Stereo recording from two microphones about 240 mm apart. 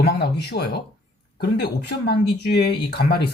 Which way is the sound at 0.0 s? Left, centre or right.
Left.